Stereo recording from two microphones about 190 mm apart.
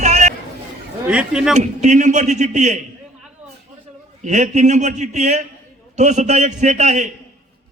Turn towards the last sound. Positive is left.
turn(degrees=-40)  # may be behind; listen again after turning